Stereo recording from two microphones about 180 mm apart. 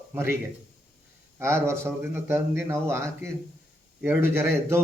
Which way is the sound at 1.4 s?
15° right (ahead or behind).